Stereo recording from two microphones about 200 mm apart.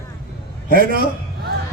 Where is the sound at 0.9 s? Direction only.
45° right (ahead or behind).